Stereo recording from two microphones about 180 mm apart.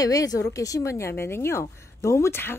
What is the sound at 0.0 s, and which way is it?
A woman's voice, 20° left (ahead or behind).